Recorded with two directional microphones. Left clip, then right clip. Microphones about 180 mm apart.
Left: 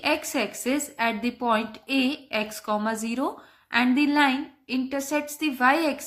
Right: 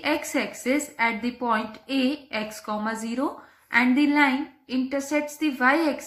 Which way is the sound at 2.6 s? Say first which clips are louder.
Left 3 dB; 30° left (ahead or behind).